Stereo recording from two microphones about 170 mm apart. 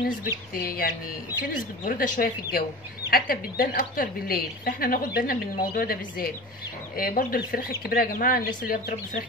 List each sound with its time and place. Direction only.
0.6 s a woman's voice: 60° left (ahead or behind)